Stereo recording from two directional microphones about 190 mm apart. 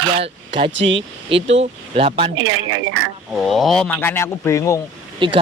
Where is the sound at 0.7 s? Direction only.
75° right (ahead or behind).